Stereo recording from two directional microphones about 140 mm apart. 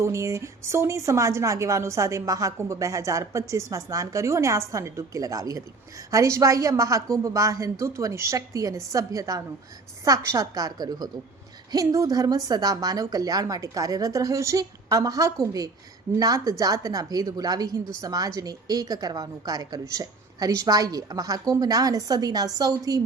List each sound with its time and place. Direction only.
0.0 s a woman's voice: 20° right (ahead or behind)